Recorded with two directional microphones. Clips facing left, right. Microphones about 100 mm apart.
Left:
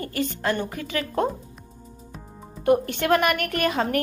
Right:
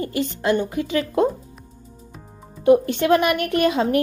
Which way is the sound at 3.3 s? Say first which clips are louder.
Right 5 dB; 25° right (ahead or behind).